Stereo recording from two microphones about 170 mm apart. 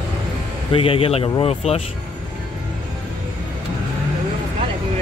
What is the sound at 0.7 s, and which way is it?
Speech, 35° left (ahead or behind).